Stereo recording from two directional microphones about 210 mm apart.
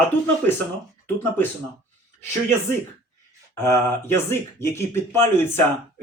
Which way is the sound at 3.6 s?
10° left (ahead or behind).